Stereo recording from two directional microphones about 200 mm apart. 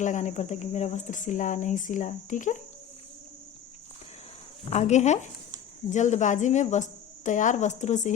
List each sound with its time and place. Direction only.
0.0 s speech: 40° left (ahead or behind)
4.7 s speech: 35° left (ahead or behind)